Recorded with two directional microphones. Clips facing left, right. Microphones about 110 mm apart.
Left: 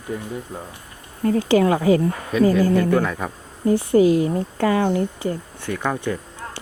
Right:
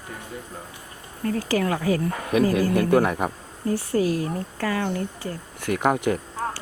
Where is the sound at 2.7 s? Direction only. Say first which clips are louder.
Even; 15° right (ahead or behind).